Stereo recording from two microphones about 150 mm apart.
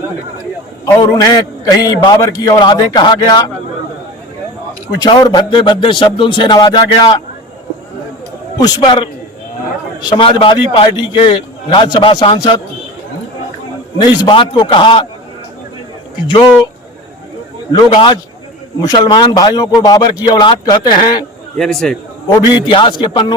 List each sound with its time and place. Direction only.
0.9 s a man's voice: 25° left (ahead or behind)
4.9 s a man's voice: 30° left (ahead or behind)
8.5 s a man's voice: 30° left (ahead or behind)
14.0 s a man's voice: 30° left (ahead or behind)
16.2 s a man's voice: 35° left (ahead or behind)
17.7 s a man's voice: 30° left (ahead or behind)
21.6 s a man's voice: 5° left (ahead or behind)
22.3 s a man's voice: 30° left (ahead or behind)